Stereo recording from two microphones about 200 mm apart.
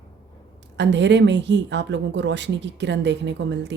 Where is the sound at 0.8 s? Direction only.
60° right (ahead or behind).